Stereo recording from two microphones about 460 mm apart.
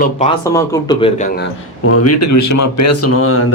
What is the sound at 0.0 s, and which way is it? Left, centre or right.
Speech, centre.